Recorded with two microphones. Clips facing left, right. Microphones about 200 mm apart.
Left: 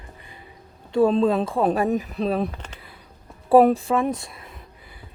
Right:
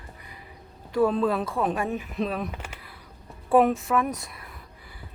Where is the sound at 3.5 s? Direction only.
35° left (ahead or behind).